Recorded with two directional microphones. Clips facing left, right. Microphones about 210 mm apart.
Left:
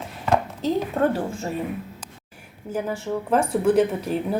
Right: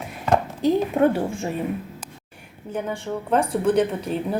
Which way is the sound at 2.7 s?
5° left (ahead or behind).